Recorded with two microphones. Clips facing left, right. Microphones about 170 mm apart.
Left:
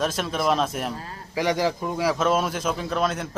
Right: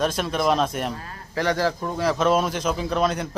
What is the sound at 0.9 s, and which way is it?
Speech, 30° left (ahead or behind).